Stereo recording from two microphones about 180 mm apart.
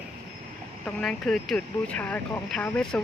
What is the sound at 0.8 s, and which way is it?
Speech, 5° left (ahead or behind).